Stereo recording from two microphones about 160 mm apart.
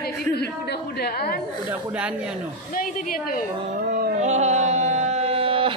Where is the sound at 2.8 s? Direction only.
65° left (ahead or behind).